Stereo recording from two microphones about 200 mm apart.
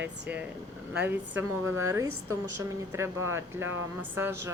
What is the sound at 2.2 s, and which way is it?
A woman's voice, 15° right (ahead or behind).